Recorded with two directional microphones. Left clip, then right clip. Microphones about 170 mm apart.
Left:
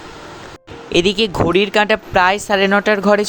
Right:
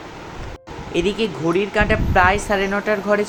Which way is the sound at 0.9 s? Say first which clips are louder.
Left 6 dB; 60° left (ahead or behind).